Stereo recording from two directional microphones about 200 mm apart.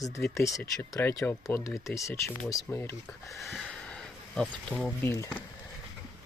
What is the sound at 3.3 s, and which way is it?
Speech, centre (ahead or behind).